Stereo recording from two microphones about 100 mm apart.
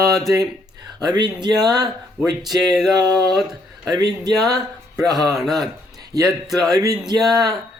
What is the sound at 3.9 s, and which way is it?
Speech, 40° right (ahead or behind).